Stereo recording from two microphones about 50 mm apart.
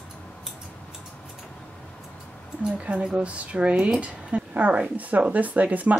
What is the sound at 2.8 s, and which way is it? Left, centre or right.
Speech, right.